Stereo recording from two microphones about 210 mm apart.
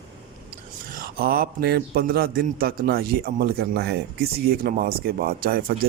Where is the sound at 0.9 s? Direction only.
45° right (ahead or behind).